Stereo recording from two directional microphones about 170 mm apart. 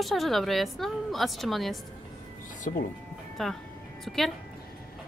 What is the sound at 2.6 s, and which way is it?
Speech, 50° left (ahead or behind).